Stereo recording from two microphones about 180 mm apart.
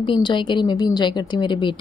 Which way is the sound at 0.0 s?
25° left (ahead or behind).